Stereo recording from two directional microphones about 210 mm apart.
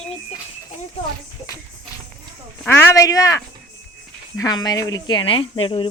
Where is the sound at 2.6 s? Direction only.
15° left (ahead or behind).